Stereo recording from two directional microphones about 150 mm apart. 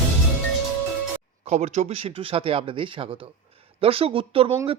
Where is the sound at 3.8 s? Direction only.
40° right (ahead or behind).